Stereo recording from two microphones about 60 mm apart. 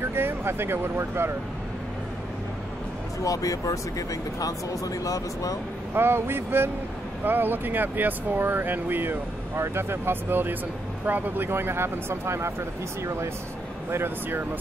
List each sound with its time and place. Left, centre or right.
0.0 s speech: right
3.3 s speech: left
5.9 s speech: right
13.8 s speech: right